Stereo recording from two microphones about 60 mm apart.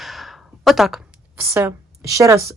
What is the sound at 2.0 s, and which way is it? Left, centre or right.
Speech, right.